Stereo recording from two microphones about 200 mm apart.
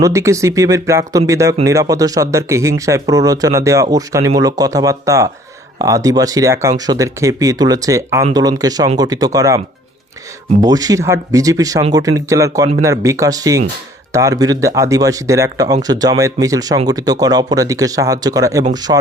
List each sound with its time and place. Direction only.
0.0 s speech: 15° right (ahead or behind)
10.6 s speech: 20° right (ahead or behind)